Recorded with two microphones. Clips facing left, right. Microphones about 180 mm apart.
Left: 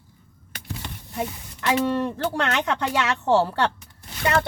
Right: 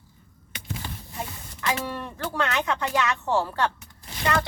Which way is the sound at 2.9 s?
75° left (ahead or behind).